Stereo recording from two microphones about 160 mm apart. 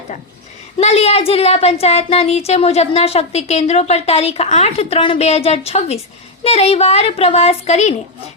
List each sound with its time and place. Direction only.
0.8 s a woman's voice: 40° left (ahead or behind)